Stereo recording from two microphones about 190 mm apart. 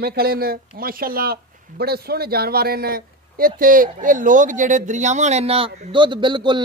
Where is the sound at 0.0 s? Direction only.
55° right (ahead or behind).